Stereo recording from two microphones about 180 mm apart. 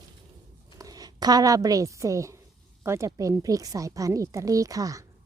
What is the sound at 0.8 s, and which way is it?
A woman's voice, 20° right (ahead or behind).